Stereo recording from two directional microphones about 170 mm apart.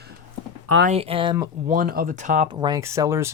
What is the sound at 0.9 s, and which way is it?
Speech, 35° right (ahead or behind).